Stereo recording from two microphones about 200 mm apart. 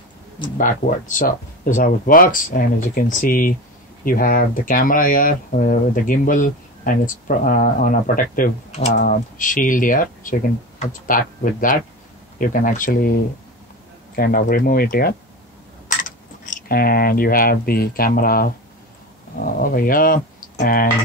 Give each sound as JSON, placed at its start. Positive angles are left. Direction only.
{"t": 0.6, "sound": "speech", "side_deg": 40}